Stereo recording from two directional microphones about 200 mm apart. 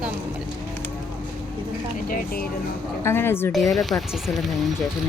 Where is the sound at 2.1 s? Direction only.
50° left (ahead or behind).